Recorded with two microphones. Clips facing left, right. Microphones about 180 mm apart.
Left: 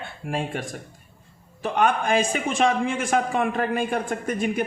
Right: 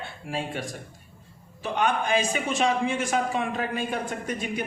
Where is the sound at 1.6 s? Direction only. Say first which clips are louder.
Left 4 dB; 50° left (ahead or behind).